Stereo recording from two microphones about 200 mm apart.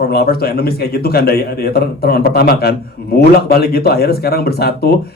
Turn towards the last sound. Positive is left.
turn(degrees=50)  # may be behind; listen again after turning